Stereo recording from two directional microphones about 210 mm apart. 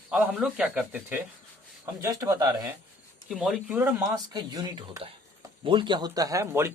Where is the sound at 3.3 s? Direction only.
Centre (ahead or behind).